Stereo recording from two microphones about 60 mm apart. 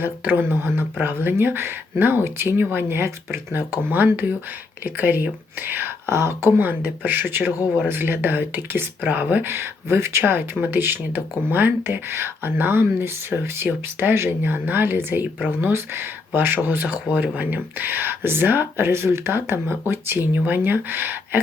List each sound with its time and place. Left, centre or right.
0.0 s speech: right
9.4 s speech: right